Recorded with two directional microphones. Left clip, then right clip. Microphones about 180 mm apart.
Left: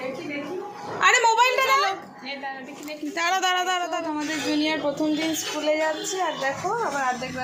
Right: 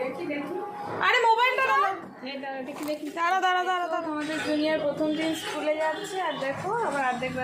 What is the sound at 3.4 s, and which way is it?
Speech, 40° left (ahead or behind).